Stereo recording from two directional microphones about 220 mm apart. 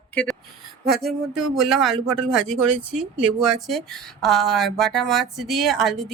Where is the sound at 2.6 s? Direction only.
85° right.